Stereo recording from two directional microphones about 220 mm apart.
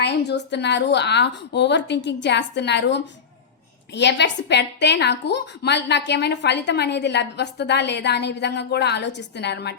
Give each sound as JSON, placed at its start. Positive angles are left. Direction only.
{"t": 0.0, "sound": "a woman's voice", "side_deg": 50}